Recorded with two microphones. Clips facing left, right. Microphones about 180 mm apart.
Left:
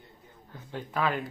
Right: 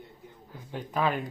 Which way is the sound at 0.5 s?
15° right (ahead or behind).